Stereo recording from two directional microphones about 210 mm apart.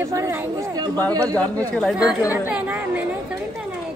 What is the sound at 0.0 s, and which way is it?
Chatter, 15° right (ahead or behind).